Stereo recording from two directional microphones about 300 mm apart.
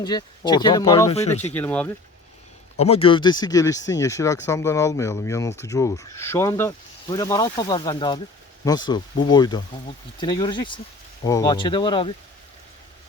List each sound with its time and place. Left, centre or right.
0.0 s speech: centre
1.1 s speech: left
1.5 s speech: centre
2.7 s speech: centre